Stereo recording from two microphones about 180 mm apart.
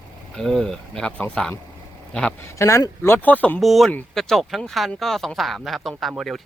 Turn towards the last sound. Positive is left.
turn(degrees=0)  # may be behind; listen again after turning